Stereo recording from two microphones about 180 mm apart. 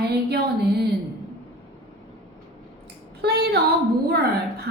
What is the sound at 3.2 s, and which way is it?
Speech, 65° right (ahead or behind).